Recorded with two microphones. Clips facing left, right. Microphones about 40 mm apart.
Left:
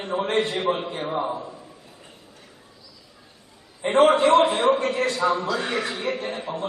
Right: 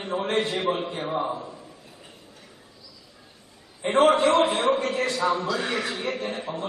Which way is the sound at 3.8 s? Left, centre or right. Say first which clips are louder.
Left 2 dB; centre.